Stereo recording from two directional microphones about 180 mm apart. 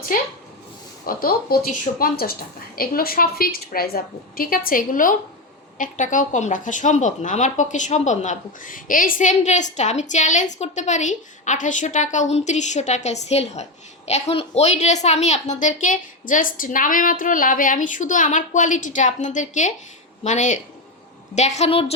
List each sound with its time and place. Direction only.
1.0 s a woman's voice: 55° left (ahead or behind); by 21.9 s 35° left (ahead or behind)